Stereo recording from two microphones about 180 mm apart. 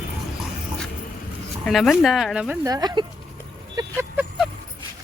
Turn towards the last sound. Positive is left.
turn(degrees=-15)  # may be behind; listen again after turning